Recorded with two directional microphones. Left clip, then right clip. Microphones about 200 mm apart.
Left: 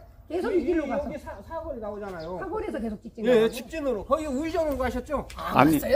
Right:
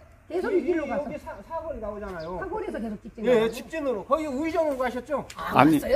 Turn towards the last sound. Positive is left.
turn(degrees=0)  # may be behind; listen again after turning